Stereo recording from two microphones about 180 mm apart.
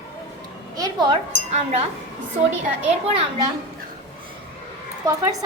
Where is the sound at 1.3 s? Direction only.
35° right (ahead or behind).